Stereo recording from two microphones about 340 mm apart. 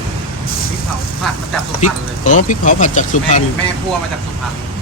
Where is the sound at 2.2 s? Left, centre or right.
Left.